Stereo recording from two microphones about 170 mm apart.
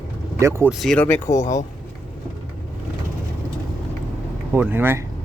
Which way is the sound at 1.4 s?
45° left (ahead or behind).